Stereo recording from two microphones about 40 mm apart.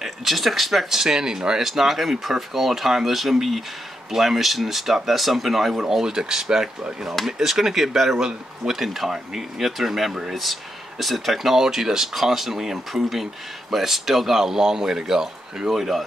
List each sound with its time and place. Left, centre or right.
0.0 s speech: centre
1.6 s speech: centre